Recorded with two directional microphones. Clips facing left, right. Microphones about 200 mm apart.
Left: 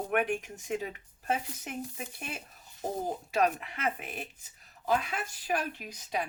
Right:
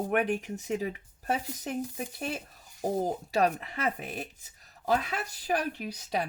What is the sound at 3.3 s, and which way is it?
Speech, 35° right (ahead or behind).